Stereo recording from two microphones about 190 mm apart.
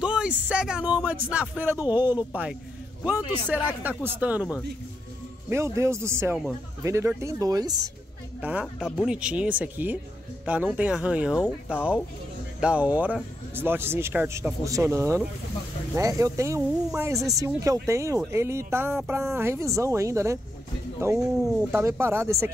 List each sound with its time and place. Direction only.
0.0 s speech: 5° right (ahead or behind)
5.5 s speech: 15° right (ahead or behind)
8.4 s speech: 10° right (ahead or behind)